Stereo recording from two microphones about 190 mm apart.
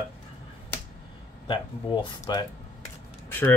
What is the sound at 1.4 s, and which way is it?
Speech, 25° left (ahead or behind).